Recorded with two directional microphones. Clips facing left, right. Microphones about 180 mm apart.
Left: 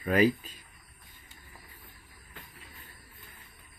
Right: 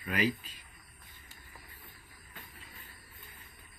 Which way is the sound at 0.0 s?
45° left (ahead or behind).